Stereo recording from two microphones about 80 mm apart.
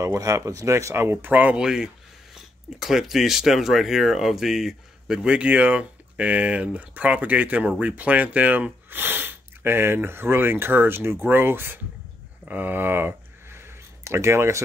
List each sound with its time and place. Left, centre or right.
0.0 s speech: right
1.1 s speech: right
1.6 s speech: centre; by 13.1 s right
14.0 s speech: right